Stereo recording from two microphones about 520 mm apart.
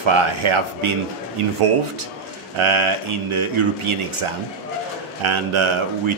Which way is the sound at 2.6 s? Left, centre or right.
Right.